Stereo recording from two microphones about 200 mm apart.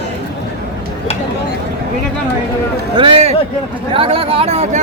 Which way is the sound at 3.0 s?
30° right (ahead or behind).